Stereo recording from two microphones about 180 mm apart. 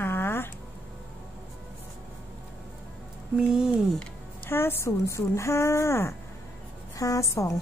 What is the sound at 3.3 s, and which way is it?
Speech, 5° right (ahead or behind).